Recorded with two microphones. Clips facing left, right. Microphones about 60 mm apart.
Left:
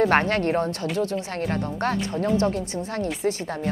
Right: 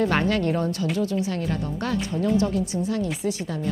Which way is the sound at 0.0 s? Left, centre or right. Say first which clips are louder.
Left 2 dB; left.